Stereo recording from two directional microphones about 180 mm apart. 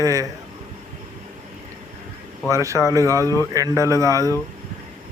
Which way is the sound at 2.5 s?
15° right (ahead or behind).